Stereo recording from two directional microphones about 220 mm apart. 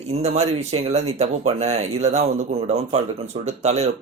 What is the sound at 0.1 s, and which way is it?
Speech, 30° right (ahead or behind).